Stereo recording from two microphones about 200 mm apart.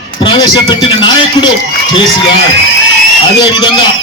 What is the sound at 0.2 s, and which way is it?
A man's voice, 25° left (ahead or behind).